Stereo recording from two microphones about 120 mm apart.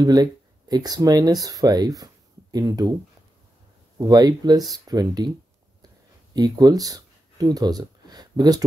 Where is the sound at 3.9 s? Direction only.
35° right (ahead or behind).